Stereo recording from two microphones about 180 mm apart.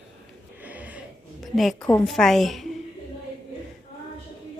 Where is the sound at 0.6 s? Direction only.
10° right (ahead or behind).